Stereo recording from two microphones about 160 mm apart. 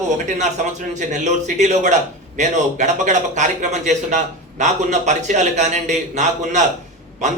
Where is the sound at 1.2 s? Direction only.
45° right (ahead or behind).